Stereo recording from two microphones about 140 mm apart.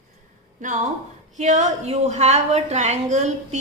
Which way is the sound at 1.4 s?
55° right (ahead or behind).